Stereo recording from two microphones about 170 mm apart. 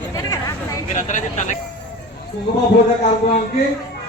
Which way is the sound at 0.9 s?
45° left (ahead or behind).